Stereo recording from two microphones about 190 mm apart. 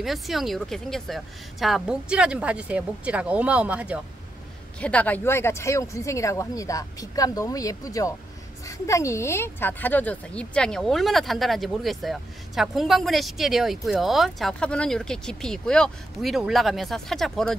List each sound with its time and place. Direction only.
0.0 s speech: centre (ahead or behind)
4.7 s speech: 5° left (ahead or behind)